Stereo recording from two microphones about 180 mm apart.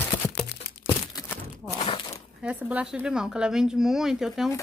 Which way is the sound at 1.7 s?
30° left (ahead or behind).